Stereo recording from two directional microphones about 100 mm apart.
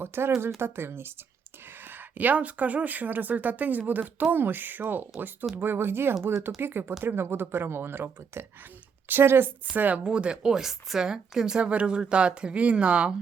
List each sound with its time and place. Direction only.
0.0 s speech: 25° right (ahead or behind)